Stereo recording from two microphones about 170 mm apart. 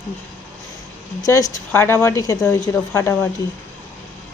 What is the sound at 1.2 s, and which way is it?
Speech, 20° left (ahead or behind).